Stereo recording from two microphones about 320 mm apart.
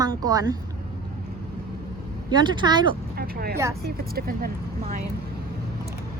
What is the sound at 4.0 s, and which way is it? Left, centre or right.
Speech, right.